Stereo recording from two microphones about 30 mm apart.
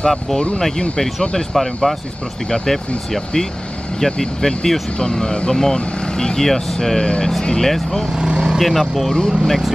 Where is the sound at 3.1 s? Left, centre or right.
Centre.